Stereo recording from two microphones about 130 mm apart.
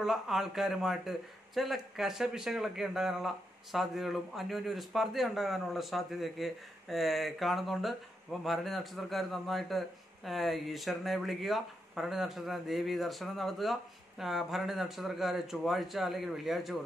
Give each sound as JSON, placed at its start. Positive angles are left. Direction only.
{"t": 0.0, "sound": "speech", "side_deg": -5}